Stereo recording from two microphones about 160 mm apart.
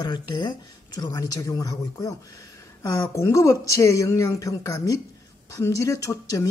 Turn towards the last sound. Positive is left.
turn(degrees=20)  # may be behind; listen again after turning